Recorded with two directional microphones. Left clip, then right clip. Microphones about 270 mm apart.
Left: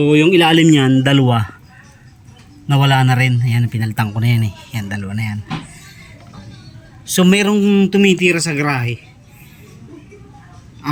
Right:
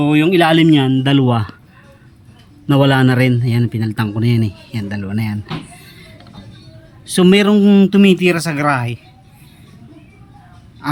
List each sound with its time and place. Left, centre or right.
0.0 s a man's voice: centre
2.6 s a man's voice: centre
7.1 s a man's voice: centre